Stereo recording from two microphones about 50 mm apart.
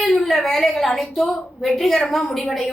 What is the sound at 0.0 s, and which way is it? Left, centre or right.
A woman's voice, centre.